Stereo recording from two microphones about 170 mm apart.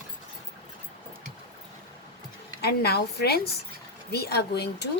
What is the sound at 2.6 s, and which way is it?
A woman's voice, 70° left (ahead or behind).